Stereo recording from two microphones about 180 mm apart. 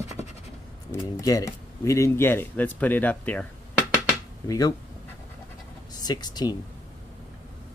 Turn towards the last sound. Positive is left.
turn(degrees=20)  # may be behind; listen again after turning